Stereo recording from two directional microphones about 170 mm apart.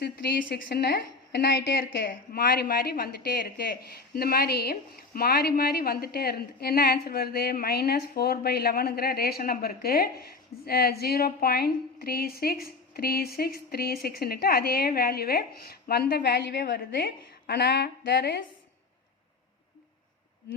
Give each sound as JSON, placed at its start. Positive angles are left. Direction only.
{"t": 0.0, "sound": "a woman's voice", "side_deg": 65}